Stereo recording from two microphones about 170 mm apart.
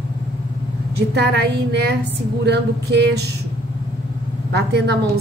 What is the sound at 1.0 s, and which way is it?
A woman's voice, 80° right.